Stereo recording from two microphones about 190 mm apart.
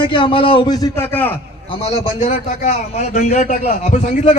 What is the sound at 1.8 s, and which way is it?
A man's voice, 35° left (ahead or behind).